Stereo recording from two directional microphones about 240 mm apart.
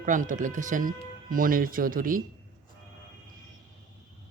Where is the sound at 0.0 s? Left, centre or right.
Right.